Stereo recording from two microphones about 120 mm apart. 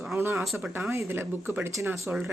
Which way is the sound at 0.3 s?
Centre (ahead or behind).